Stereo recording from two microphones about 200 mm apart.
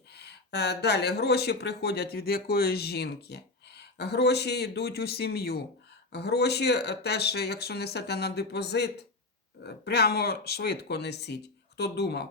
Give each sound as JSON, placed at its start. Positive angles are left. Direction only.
{"t": 0.1, "sound": "speech", "side_deg": 55}